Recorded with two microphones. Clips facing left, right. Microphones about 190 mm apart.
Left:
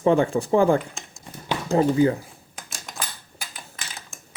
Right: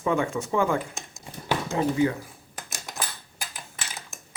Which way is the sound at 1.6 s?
35° left (ahead or behind).